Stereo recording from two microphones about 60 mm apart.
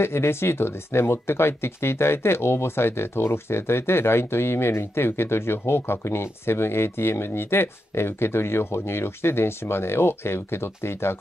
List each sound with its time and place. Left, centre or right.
0.0 s speech: left